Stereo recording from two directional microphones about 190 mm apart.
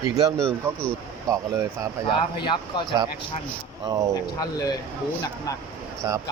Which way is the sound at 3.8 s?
20° right (ahead or behind).